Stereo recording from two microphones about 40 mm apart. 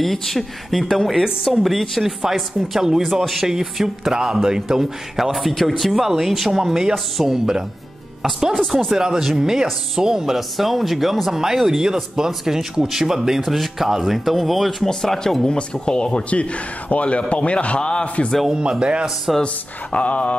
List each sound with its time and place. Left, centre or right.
0.0 s speech: centre
13.4 s speech: centre
14.9 s speech: centre
15.4 s mantra: left
16.9 s a man's voice: left
18.5 s a man's voice: right
19.4 s mantra: left